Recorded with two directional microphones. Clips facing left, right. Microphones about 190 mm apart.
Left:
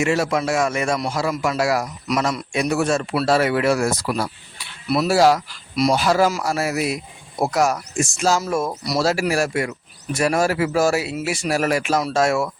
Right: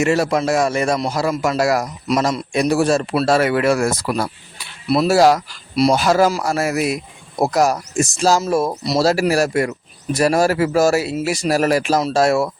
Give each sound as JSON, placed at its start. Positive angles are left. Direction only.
{"t": 0.0, "sound": "speech", "side_deg": -40}
{"t": 2.0, "sound": "a man's voice", "side_deg": -30}